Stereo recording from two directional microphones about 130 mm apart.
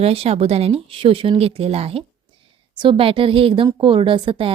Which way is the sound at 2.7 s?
40° right (ahead or behind).